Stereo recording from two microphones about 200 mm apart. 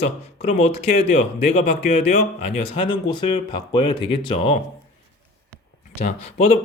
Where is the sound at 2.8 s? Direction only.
25° left (ahead or behind).